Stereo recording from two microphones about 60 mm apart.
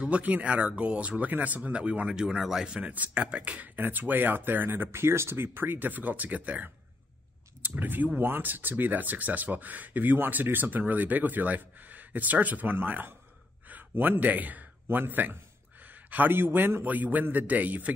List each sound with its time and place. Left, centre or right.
0.0 s a man's voice: right